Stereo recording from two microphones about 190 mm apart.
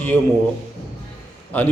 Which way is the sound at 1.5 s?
10° left (ahead or behind).